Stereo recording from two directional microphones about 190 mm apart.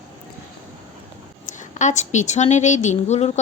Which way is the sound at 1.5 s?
40° left (ahead or behind).